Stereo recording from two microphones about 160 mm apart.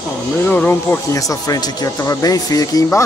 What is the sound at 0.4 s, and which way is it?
Speech, 10° left (ahead or behind).